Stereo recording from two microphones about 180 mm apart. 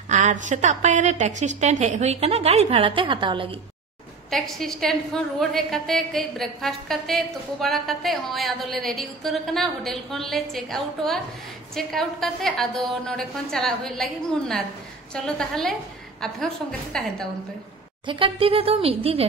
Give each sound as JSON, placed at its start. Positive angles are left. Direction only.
{"t": 0.1, "sound": "a woman's voice", "side_deg": -40}
{"t": 4.3, "sound": "a woman's voice", "side_deg": 0}
{"t": 18.0, "sound": "a woman's voice", "side_deg": -30}